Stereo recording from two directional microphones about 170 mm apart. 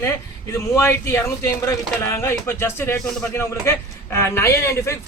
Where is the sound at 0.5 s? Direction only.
15° left (ahead or behind).